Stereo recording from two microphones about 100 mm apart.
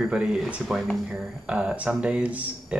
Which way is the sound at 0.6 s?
5° left (ahead or behind).